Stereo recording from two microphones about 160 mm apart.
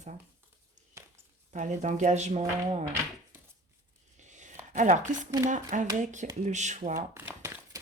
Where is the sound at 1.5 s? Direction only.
50° right (ahead or behind).